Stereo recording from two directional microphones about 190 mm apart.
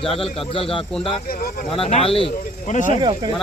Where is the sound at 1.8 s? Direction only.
35° left (ahead or behind).